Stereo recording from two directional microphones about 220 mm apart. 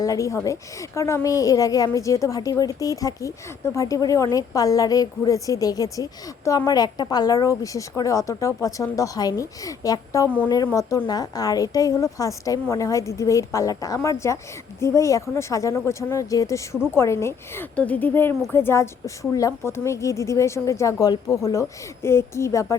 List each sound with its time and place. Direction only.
0.0 s a woman's voice: 15° left (ahead or behind)